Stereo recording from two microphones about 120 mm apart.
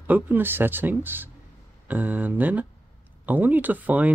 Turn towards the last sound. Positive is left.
turn(degrees=-15)  # may be behind; listen again after turning